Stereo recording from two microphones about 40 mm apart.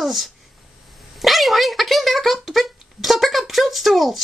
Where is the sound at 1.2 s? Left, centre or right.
Centre.